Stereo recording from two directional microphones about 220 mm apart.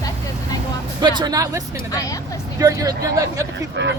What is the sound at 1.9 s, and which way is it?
Speech, 15° left (ahead or behind).